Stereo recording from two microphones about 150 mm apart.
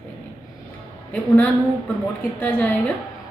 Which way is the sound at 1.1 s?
10° left (ahead or behind).